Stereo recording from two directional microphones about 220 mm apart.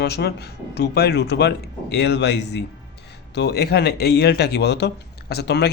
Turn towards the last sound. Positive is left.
turn(degrees=50)  # may be behind; listen again after turning